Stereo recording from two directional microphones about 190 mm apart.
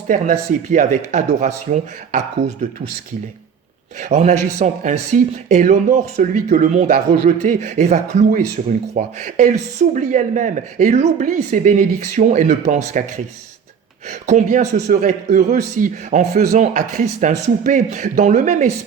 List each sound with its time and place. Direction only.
0.1 s speech: 40° right (ahead or behind)
4.0 s speech: 40° right (ahead or behind)
14.1 s speech: 40° right (ahead or behind)